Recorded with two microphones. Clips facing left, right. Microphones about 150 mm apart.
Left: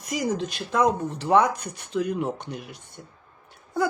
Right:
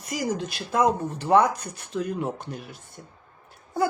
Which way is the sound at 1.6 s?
65° left (ahead or behind).